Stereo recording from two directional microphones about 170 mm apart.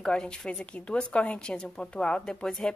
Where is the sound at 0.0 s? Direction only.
5° left (ahead or behind).